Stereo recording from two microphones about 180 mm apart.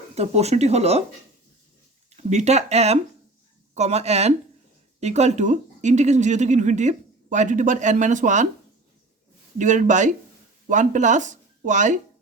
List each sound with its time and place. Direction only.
0.2 s speech: 35° right (ahead or behind)
2.0 s speech: 40° right (ahead or behind)
9.6 s speech: 45° right (ahead or behind)